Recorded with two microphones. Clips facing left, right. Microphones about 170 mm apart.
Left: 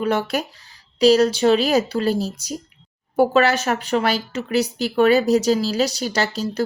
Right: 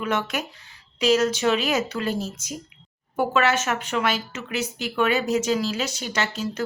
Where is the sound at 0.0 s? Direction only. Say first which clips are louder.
Left 5 dB; 35° left (ahead or behind).